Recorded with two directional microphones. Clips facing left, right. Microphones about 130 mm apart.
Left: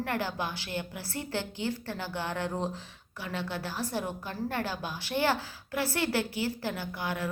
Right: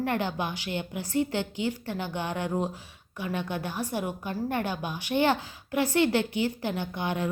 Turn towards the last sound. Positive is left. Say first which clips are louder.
# right 4 dB
turn(degrees=-20)  # may be behind; listen again after turning